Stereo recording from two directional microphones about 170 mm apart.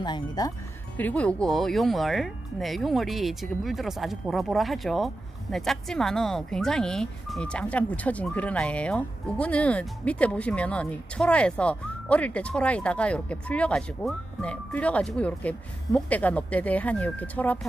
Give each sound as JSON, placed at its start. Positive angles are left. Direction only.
{"t": 0.0, "sound": "speech", "side_deg": 25}
{"t": 0.9, "sound": "speech", "side_deg": 10}